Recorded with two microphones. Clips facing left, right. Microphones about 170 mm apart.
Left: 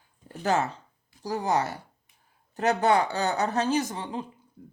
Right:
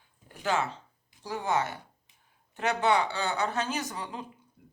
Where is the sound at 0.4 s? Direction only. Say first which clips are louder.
Left 4 dB; 40° left (ahead or behind).